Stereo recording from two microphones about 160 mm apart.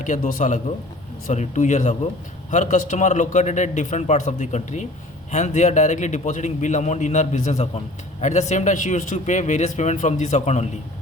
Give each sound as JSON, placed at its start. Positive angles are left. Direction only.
{"t": 0.0, "sound": "a man's voice", "side_deg": 50}